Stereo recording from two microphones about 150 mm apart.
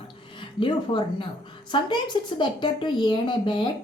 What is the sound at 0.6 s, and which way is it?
A woman's voice, 30° left (ahead or behind).